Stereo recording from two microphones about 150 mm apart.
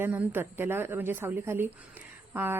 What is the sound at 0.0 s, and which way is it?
A woman's voice, 15° right (ahead or behind).